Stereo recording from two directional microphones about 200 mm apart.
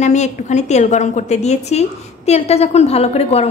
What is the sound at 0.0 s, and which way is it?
A woman's voice, 35° left (ahead or behind).